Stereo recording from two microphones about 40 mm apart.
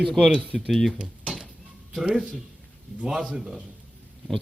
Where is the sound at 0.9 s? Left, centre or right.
Right.